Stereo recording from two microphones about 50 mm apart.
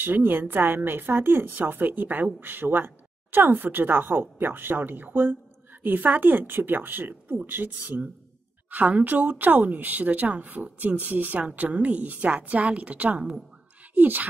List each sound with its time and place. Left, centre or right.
0.0 s speech: right